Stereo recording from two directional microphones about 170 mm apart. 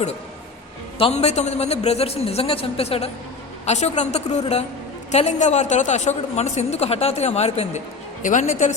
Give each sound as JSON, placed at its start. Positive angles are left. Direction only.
{"t": 0.9, "sound": "a woman's voice", "side_deg": 35}